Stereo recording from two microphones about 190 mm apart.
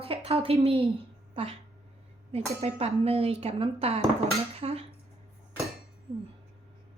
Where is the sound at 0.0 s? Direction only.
30° right (ahead or behind).